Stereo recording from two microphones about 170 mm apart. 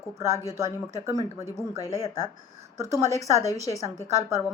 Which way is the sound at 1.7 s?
20° left (ahead or behind).